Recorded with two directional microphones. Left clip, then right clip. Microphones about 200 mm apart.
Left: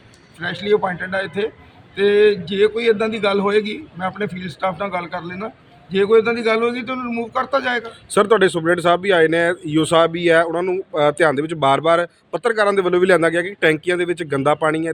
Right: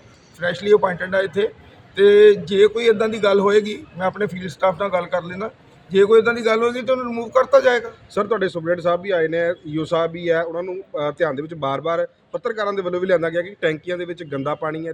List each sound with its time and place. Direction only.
0.3 s a man's voice: 5° right (ahead or behind)
8.1 s speech: 60° left (ahead or behind)